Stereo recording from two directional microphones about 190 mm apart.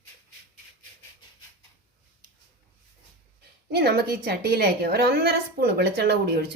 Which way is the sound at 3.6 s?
60° right (ahead or behind).